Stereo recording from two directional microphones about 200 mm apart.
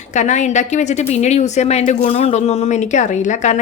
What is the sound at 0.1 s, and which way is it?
A woman's voice, 35° left (ahead or behind).